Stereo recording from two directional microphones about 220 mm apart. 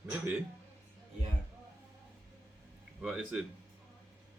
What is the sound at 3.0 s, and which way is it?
Speech, 5° right (ahead or behind).